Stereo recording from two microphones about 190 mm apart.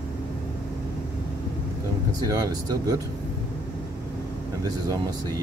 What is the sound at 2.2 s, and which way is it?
Speech, 20° right (ahead or behind).